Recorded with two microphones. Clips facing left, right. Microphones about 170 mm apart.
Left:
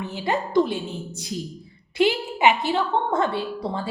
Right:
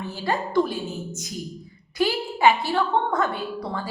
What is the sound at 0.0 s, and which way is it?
A woman's voice, 20° left (ahead or behind).